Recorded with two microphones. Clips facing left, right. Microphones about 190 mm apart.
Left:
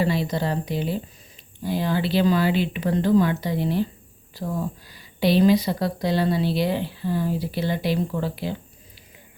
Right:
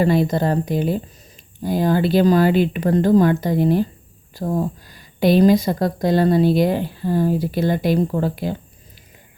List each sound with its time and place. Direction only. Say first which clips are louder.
0.0 s speech: right 6 dB; 50° right (ahead or behind)